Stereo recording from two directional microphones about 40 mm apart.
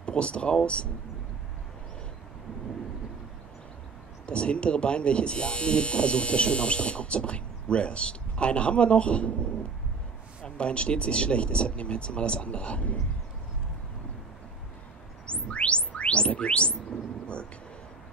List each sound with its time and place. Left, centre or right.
0.0 s speech: left
4.3 s speech: left
15.2 s chirp tone: left